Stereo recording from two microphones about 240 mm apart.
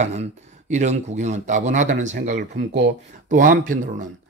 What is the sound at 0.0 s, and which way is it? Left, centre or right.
Speech, right.